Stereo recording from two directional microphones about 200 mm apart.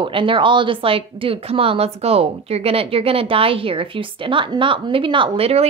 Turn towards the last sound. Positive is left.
turn(degrees=-30)  # may be behind; listen again after turning